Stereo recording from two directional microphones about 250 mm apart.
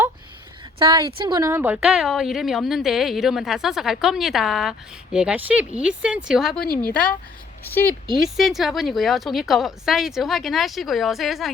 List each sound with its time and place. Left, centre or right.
0.8 s a woman's voice: centre
6.6 s speech: left
7.7 s a woman's voice: centre